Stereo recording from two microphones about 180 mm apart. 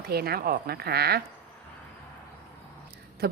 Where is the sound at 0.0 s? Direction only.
60° right (ahead or behind).